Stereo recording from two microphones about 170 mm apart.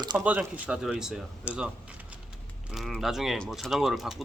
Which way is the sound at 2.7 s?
Centre (ahead or behind).